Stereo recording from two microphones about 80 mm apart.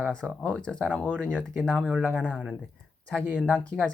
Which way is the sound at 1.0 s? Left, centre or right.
Centre.